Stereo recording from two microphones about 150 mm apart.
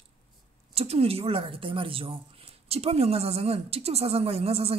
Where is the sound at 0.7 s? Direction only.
40° right (ahead or behind).